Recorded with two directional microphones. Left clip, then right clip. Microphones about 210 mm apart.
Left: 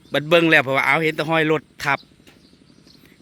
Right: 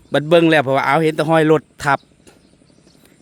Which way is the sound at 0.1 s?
30° right (ahead or behind).